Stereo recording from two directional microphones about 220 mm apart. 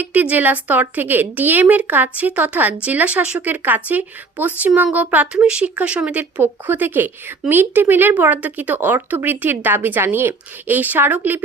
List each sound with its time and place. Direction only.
0.0 s speech: 5° right (ahead or behind)